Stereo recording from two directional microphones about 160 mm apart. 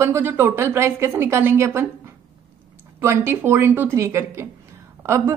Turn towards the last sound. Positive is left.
turn(degrees=-15)  # may be behind; listen again after turning